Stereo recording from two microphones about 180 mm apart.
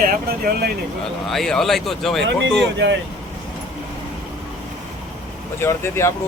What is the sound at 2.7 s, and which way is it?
Speech, 75° right (ahead or behind).